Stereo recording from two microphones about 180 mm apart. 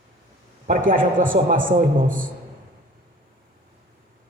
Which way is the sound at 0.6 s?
50° right (ahead or behind).